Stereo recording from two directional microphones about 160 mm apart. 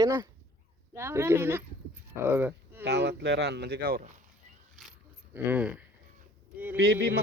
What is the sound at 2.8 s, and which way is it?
Speech, 90° right.